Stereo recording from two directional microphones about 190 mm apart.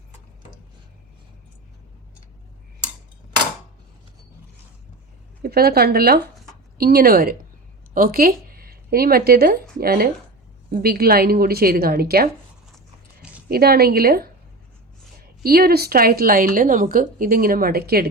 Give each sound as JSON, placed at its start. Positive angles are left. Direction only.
{"t": 5.4, "sound": "a woman's voice", "side_deg": -55}
{"t": 13.5, "sound": "a woman's voice", "side_deg": -55}
{"t": 15.4, "sound": "a woman's voice", "side_deg": -55}